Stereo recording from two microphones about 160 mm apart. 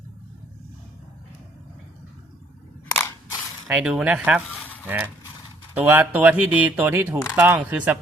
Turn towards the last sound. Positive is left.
turn(degrees=-10)  # may be behind; listen again after turning